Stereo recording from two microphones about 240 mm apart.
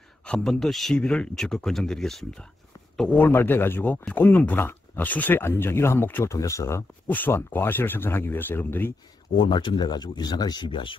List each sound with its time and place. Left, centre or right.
0.2 s speech: centre
9.4 s speech: centre